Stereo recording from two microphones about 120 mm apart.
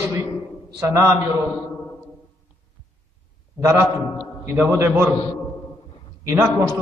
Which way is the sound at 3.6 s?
20° right (ahead or behind).